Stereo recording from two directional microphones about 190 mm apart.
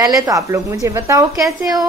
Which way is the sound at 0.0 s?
15° right (ahead or behind).